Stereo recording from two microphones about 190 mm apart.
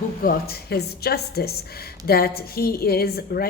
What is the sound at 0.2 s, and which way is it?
A woman's voice, 50° left (ahead or behind).